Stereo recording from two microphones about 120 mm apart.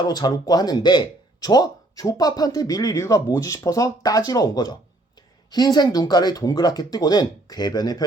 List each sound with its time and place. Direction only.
0.0 s speech: 35° left (ahead or behind)